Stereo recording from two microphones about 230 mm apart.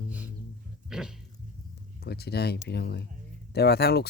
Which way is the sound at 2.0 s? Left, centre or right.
Left.